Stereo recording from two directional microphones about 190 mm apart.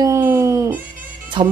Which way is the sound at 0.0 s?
15° right (ahead or behind).